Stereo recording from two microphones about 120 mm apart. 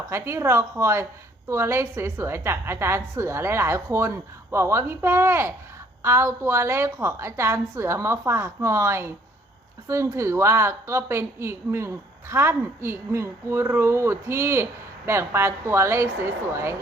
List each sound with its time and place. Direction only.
0.1 s a woman's voice: 20° right (ahead or behind)